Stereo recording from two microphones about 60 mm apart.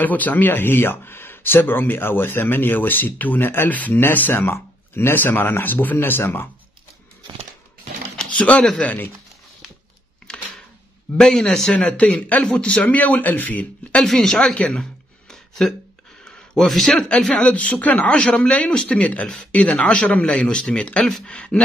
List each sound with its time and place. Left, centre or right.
0.0 s speech: left
8.2 s speech: left
10.3 s a sound: centre
11.1 s a man's voice: centre
11.7 s speech: left
12.8 s speech: left
14.0 s a man's voice: centre
14.5 s a sound: centre
16.8 s a man's voice: centre